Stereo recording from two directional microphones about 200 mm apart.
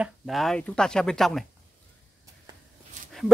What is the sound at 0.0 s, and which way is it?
Speech, centre (ahead or behind).